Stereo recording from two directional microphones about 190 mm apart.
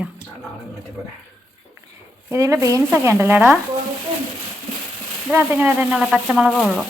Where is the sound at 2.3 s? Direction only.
15° right (ahead or behind).